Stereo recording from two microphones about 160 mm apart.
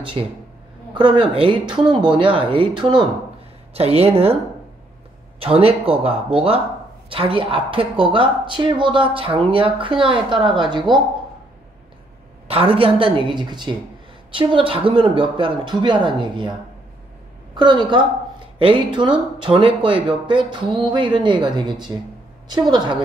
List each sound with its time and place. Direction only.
0.2 s a woman's voice: 30° right (ahead or behind)
5.4 s a woman's voice: 35° right (ahead or behind)
12.4 s a woman's voice: 35° right (ahead or behind)
17.6 s a woman's voice: 30° right (ahead or behind)